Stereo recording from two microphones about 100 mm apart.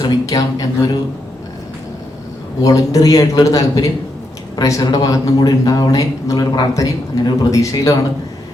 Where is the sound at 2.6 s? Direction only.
35° left (ahead or behind).